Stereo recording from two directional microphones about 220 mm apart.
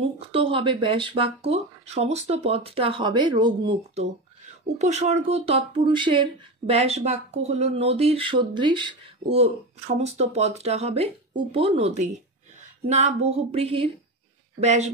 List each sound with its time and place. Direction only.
0.0 s speech: 25° right (ahead or behind)